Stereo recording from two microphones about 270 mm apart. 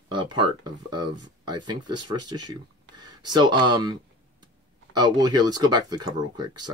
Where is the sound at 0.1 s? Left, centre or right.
Centre.